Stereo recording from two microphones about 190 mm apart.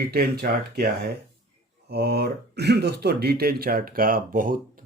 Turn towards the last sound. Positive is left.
turn(degrees=-45)  # may be behind; listen again after turning